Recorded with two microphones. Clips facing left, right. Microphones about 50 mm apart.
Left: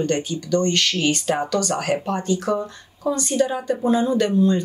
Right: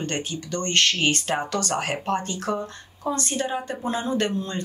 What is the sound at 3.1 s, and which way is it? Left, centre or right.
Speech, right.